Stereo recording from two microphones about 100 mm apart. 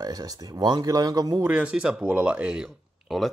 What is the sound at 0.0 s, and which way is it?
Speech, 40° right (ahead or behind).